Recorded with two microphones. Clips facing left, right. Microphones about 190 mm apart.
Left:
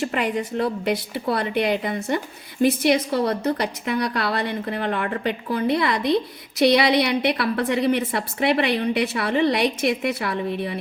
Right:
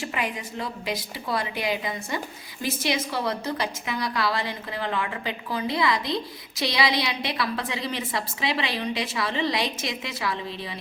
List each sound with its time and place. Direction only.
0.0 s a woman's voice: 60° left (ahead or behind)